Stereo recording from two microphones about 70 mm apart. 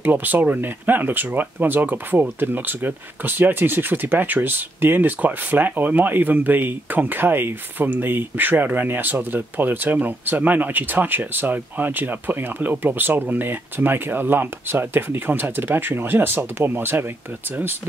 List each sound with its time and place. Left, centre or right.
0.0 s speech: right